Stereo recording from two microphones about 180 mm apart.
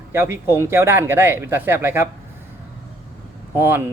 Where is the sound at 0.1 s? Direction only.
15° right (ahead or behind).